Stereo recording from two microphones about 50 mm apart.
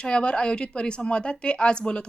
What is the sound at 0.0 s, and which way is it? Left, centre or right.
A woman's voice, centre.